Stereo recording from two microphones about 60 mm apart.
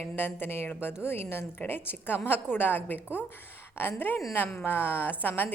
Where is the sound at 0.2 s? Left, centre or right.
Left.